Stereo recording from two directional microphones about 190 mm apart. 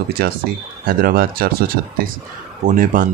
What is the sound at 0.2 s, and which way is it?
Speech, 55° right (ahead or behind).